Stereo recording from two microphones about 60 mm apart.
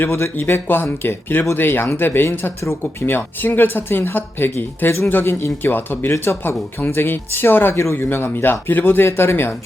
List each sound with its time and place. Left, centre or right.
0.0 s speech: left